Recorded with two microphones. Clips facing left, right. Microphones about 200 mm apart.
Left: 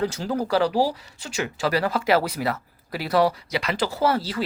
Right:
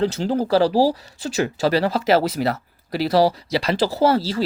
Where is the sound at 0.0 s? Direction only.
30° right (ahead or behind).